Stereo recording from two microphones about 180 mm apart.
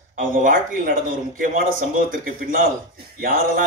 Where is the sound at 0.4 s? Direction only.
50° right (ahead or behind).